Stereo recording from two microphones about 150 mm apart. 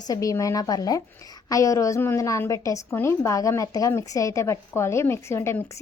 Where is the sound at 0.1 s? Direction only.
20° left (ahead or behind).